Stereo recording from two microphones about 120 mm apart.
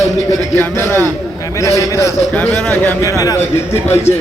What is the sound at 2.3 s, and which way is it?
Speech, 10° left (ahead or behind).